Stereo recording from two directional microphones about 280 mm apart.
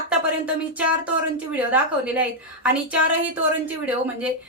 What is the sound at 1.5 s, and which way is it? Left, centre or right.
Speech, centre.